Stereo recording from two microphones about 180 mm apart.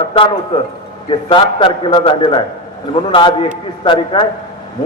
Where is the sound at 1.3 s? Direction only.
25° left (ahead or behind).